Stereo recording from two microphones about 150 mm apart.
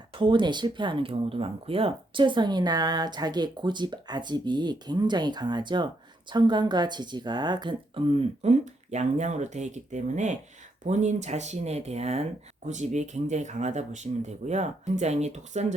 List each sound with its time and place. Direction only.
0.1 s a woman's voice: 35° right (ahead or behind); by 15.6 s 50° right (ahead or behind)